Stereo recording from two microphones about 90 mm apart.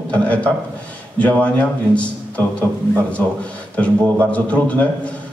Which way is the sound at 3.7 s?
15° left (ahead or behind).